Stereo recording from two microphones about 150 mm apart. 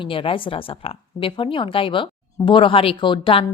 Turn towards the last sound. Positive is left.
turn(degrees=35)  # may be behind; listen again after turning